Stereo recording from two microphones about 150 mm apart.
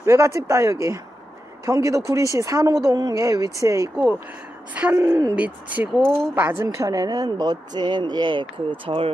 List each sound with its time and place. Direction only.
0.0 s speech: 20° right (ahead or behind); by 9.1 s 35° right (ahead or behind)